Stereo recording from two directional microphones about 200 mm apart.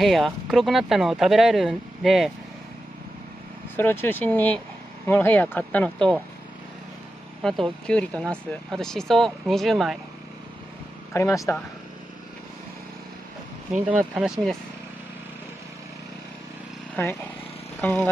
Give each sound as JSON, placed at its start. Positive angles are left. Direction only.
{"t": 0.0, "sound": "speech", "side_deg": 0}
{"t": 3.7, "sound": "speech", "side_deg": 10}
{"t": 7.4, "sound": "speech", "side_deg": 5}
{"t": 11.1, "sound": "speech", "side_deg": 15}
{"t": 13.8, "sound": "speech", "side_deg": -5}
{"t": 16.9, "sound": "speech", "side_deg": 10}
{"t": 17.7, "sound": "speech", "side_deg": 0}